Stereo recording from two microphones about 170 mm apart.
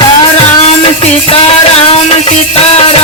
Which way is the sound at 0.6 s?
35° left (ahead or behind).